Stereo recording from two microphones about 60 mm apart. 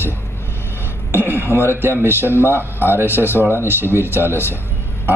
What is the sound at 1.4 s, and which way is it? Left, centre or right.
Speech, left.